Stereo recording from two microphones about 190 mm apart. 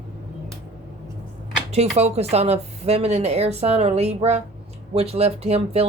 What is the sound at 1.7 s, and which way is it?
Speech, 35° right (ahead or behind).